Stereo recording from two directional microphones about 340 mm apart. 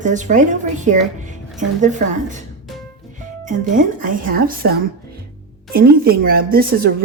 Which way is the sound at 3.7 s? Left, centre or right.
Right.